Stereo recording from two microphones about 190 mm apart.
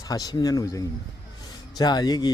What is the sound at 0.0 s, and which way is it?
Speech, 20° left (ahead or behind).